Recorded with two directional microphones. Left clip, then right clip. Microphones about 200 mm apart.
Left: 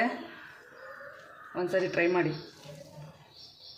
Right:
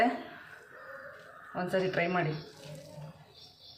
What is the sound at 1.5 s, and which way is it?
Speech, 25° left (ahead or behind).